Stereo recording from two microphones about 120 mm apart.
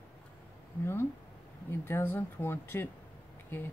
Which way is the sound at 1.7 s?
20° left (ahead or behind).